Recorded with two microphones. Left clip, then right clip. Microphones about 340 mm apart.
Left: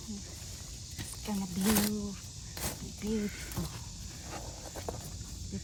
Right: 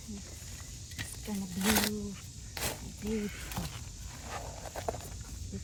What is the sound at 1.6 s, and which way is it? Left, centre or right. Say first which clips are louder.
Speech: right 2 dB; right.